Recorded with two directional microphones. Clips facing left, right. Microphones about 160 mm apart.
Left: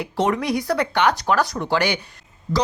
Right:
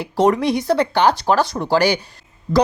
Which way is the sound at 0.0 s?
35° right (ahead or behind).